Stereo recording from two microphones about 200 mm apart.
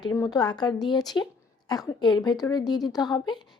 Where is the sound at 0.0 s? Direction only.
15° left (ahead or behind).